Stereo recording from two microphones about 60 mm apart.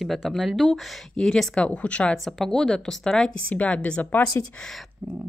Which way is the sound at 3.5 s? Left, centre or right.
Left.